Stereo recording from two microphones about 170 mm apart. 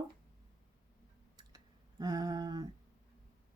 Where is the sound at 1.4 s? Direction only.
25° right (ahead or behind).